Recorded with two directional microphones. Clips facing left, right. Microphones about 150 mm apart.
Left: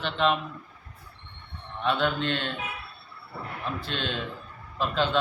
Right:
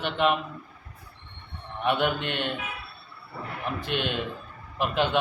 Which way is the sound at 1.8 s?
15° right (ahead or behind).